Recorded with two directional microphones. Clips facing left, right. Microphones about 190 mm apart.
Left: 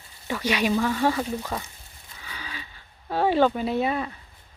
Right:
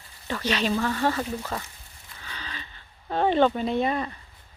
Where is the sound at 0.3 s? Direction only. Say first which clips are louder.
Left 2 dB; 10° left (ahead or behind).